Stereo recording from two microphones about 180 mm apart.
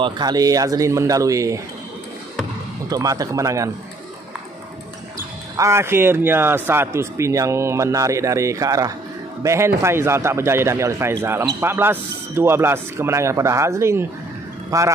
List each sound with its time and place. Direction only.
0.0 s speech: 20° right (ahead or behind)
2.9 s speech: 20° right (ahead or behind)
5.6 s speech: 15° right (ahead or behind)